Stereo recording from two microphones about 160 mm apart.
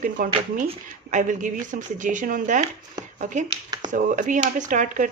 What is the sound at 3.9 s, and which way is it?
Speech, 55° right (ahead or behind).